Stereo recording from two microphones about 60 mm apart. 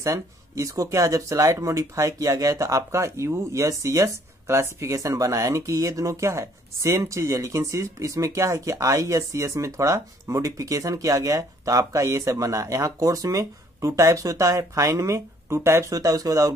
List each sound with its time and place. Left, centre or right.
0.0 s speech: right
4.5 s speech: right
15.9 s speech: right